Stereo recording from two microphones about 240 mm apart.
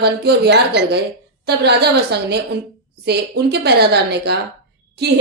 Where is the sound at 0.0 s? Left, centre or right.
Right.